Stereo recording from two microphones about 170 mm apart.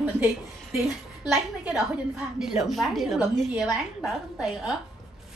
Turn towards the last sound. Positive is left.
turn(degrees=-5)  # may be behind; listen again after turning